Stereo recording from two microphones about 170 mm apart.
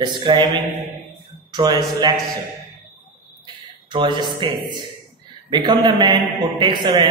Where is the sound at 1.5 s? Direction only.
25° right (ahead or behind).